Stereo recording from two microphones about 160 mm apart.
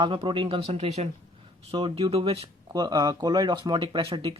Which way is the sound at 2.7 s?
25° right (ahead or behind).